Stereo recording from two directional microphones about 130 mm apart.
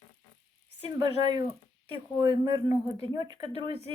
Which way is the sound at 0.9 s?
30° right (ahead or behind).